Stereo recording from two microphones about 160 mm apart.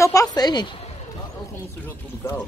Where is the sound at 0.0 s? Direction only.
20° left (ahead or behind).